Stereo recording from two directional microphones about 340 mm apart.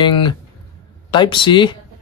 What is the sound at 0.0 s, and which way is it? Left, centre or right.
Speech, centre.